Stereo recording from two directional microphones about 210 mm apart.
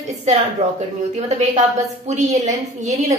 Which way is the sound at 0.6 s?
30° right (ahead or behind).